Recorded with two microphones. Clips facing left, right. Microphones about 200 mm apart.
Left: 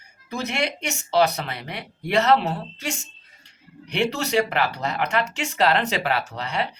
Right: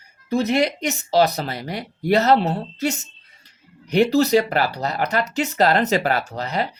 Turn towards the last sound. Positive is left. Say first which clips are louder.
# right 3 dB
turn(degrees=-40)  # may be behind; listen again after turning